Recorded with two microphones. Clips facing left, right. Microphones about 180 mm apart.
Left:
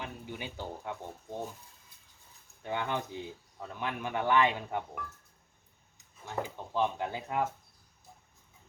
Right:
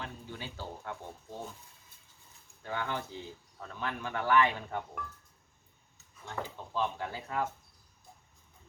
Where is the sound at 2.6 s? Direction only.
20° left (ahead or behind).